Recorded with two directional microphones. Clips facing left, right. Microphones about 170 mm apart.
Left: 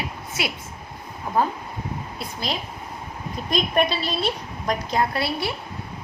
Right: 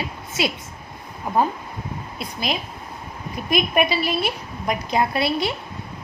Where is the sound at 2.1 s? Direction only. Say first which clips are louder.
Right 4 dB; 15° right (ahead or behind).